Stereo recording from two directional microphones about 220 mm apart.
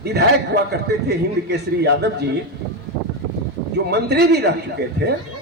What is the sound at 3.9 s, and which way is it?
A man's voice, 50° right (ahead or behind).